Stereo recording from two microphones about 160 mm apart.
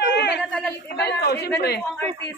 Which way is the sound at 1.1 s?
80° left.